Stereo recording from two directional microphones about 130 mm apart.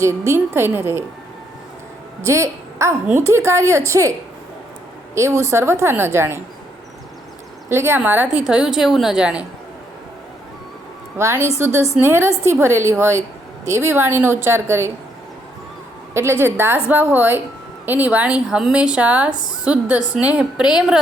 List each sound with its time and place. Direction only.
0.0 s speech: 20° right (ahead or behind)
2.2 s a woman's voice: 20° right (ahead or behind)
5.1 s a woman's voice: 20° right (ahead or behind)
7.7 s speech: 20° right (ahead or behind)
11.2 s a woman's voice: 20° right (ahead or behind)
16.4 s speech: 20° right (ahead or behind)